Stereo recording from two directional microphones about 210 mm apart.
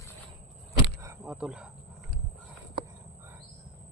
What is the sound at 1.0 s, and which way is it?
Speech, 10° right (ahead or behind).